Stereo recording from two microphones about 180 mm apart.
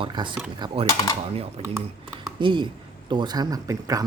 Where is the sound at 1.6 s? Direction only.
30° right (ahead or behind).